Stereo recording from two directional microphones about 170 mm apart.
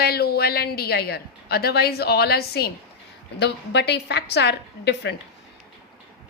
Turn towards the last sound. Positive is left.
turn(degrees=80)